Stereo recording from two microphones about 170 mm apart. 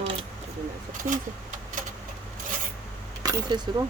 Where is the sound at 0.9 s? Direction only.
50° right (ahead or behind).